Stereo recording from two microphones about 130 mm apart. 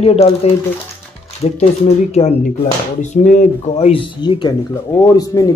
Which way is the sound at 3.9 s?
40° left (ahead or behind).